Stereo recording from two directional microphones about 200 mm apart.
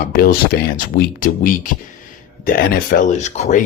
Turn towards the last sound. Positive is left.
turn(degrees=35)  # may be behind; listen again after turning